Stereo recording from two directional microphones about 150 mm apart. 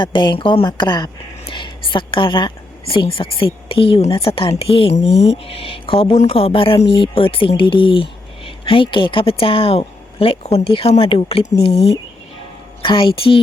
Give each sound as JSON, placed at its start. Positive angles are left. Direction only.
{"t": 0.0, "sound": "speech", "side_deg": 30}